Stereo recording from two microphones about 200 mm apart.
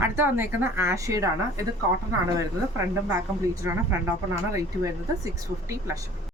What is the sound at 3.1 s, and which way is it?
Speech, 15° right (ahead or behind).